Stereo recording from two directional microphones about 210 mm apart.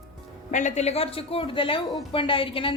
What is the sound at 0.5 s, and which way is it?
A woman's voice, 35° left (ahead or behind).